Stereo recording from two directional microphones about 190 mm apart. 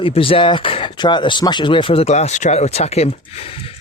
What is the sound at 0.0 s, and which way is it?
Speech, 30° left (ahead or behind).